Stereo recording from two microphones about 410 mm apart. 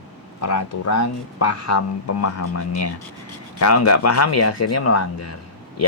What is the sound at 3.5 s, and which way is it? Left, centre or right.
Speech, left.